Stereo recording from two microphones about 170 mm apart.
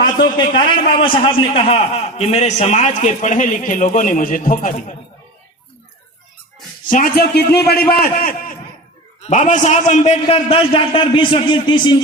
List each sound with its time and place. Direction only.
0.3 s a man's voice: 30° left (ahead or behind); by 4.9 s 50° left (ahead or behind)
6.9 s a man's voice: 60° left (ahead or behind)
9.2 s a man's voice: 45° left (ahead or behind); by 11.9 s 30° left (ahead or behind)